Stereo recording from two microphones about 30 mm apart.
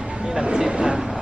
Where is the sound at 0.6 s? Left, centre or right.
Right.